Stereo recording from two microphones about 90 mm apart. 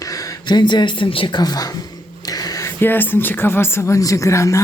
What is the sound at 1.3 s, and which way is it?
Speech, 50° left (ahead or behind).